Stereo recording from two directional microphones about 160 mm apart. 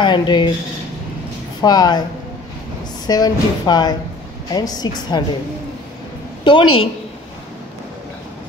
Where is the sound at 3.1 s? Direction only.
25° left (ahead or behind).